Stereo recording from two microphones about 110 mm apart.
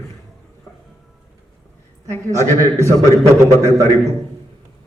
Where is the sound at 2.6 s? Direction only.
25° right (ahead or behind).